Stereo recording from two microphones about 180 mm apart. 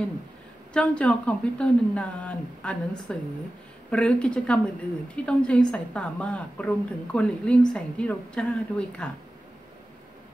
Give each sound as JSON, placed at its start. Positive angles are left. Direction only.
{"t": 0.7, "sound": "a woman's voice", "side_deg": 5}